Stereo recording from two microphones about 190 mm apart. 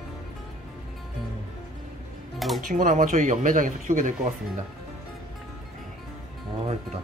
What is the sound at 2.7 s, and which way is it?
Speech, 45° right (ahead or behind).